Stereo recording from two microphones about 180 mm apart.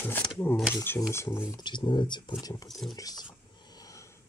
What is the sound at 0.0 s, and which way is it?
Speech, 10° left (ahead or behind).